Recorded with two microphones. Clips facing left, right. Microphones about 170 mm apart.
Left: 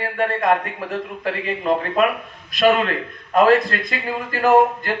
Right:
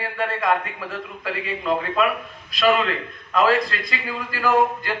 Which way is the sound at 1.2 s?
40° left (ahead or behind).